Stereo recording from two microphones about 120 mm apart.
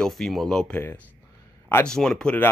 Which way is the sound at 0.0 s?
Centre (ahead or behind).